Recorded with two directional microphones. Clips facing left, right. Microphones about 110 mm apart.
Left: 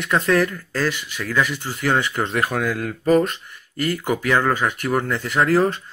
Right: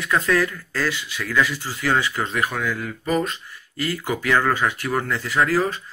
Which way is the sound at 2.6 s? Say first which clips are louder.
Left 3 dB; 50° left (ahead or behind).